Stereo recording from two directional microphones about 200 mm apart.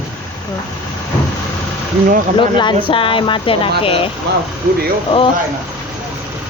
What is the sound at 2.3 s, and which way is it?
Speech, 25° left (ahead or behind).